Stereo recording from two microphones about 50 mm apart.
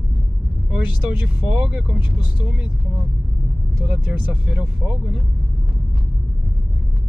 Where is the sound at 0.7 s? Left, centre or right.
Right.